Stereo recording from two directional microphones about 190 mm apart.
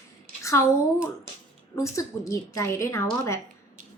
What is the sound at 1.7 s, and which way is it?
Speech, 15° left (ahead or behind).